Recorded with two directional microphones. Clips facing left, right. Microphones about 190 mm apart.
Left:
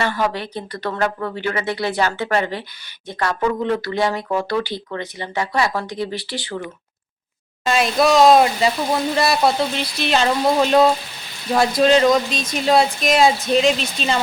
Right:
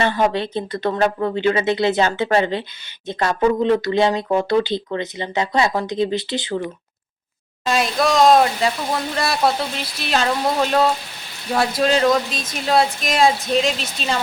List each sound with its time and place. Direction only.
0.0 s speech: 20° right (ahead or behind)
7.6 s speech: centre (ahead or behind)